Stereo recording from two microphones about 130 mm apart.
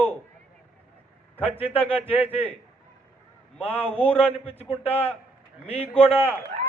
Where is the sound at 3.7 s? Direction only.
15° left (ahead or behind).